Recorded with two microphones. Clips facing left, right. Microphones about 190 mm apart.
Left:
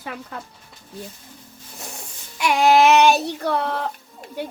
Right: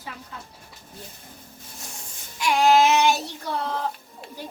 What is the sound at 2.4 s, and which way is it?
Child singing, 65° left (ahead or behind).